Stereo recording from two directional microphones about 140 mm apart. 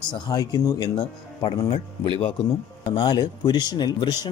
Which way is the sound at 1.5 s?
45° left (ahead or behind).